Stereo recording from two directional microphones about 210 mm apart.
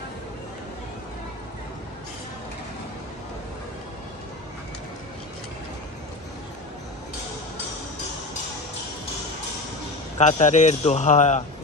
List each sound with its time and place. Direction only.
10.1 s a man's voice: 35° left (ahead or behind)